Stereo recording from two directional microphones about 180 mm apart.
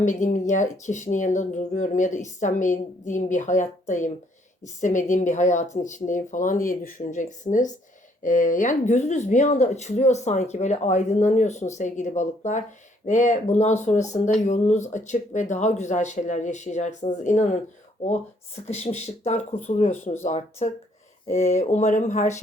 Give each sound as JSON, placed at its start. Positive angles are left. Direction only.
{"t": 0.0, "sound": "speech", "side_deg": 40}